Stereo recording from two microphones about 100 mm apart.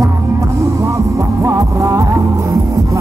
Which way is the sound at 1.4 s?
30° right (ahead or behind).